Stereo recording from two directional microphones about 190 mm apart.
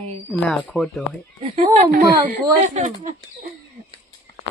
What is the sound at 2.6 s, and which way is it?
Speech, 40° right (ahead or behind).